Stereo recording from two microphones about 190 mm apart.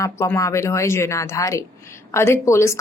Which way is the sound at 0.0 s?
15° left (ahead or behind).